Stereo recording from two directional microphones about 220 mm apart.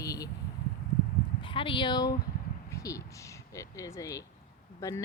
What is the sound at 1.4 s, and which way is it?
Speech, 25° left (ahead or behind).